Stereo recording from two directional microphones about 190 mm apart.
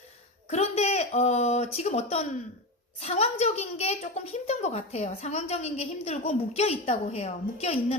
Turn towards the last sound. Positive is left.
turn(degrees=35)  # may be behind; listen again after turning